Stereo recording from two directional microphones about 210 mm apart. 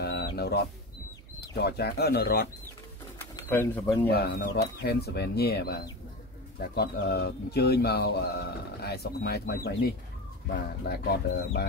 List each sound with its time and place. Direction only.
0.0 s a sound: 50° left (ahead or behind)
1.6 s speech: 50° left (ahead or behind)
3.2 s speech: 10° left (ahead or behind)
4.1 s speech: 50° left (ahead or behind)